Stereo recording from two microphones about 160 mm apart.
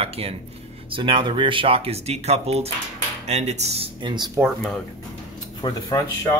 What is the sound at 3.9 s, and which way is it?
Speech, 25° right (ahead or behind).